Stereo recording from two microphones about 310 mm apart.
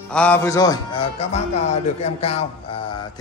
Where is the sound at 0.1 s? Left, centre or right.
Centre.